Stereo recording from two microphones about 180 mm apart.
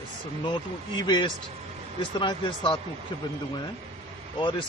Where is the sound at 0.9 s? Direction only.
25° left (ahead or behind).